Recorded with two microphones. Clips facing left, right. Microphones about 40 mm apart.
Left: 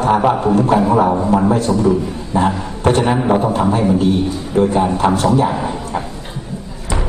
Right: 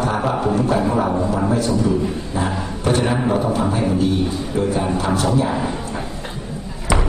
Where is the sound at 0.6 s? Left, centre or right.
Left.